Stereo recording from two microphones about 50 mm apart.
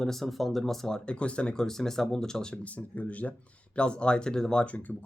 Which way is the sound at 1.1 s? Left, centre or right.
Left.